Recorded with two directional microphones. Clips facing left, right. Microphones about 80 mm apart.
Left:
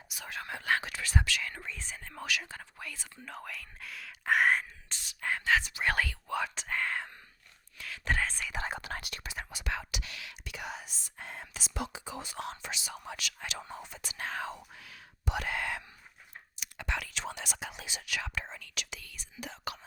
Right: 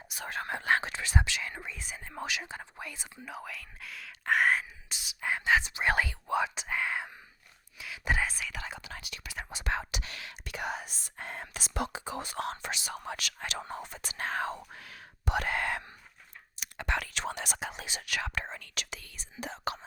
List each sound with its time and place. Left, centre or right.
0.1 s speech: right; by 3.1 s centre
3.2 s speech: centre
4.9 s whispering: centre
8.5 s whispering: left
9.5 s whispering: right
16.6 s speech: right